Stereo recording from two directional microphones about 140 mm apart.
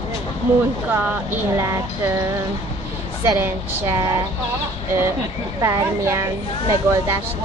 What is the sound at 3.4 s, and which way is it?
Speech, 15° right (ahead or behind).